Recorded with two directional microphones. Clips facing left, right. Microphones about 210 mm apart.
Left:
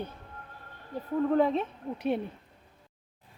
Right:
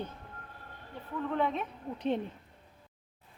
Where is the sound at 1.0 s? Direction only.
40° left (ahead or behind).